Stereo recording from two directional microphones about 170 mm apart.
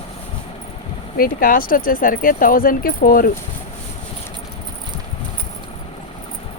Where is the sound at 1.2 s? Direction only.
60° left (ahead or behind).